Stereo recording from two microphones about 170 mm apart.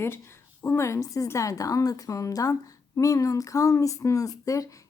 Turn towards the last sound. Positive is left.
turn(degrees=20)  # may be behind; listen again after turning